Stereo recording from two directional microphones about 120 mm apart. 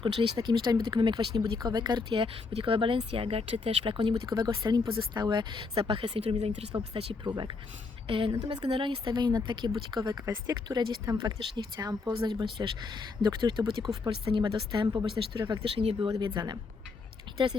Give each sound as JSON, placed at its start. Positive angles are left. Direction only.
{"t": 0.0, "sound": "speech", "side_deg": -40}
{"t": 5.9, "sound": "speech", "side_deg": -50}
{"t": 6.7, "sound": "speech", "side_deg": -45}
{"t": 15.6, "sound": "speech", "side_deg": -50}
{"t": 16.0, "sound": "speech", "side_deg": -35}